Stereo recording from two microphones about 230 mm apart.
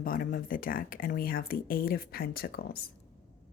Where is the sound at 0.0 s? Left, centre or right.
Left.